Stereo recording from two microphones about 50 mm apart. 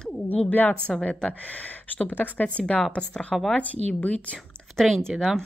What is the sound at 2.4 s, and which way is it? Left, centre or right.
Speech, left.